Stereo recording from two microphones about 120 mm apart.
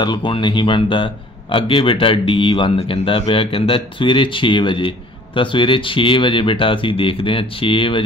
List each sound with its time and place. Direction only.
0.0 s a man's voice: 40° left (ahead or behind)